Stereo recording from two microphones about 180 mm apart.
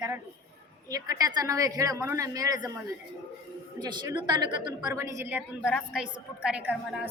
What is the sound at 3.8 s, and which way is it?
A woman's voice, 25° right (ahead or behind).